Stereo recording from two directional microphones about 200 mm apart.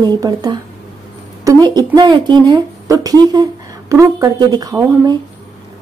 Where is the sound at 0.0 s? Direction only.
20° right (ahead or behind).